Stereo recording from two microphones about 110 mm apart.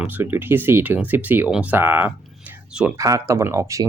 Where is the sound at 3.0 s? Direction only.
30° right (ahead or behind).